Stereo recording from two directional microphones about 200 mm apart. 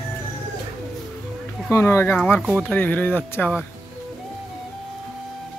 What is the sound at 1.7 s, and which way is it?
Speech, 10° left (ahead or behind).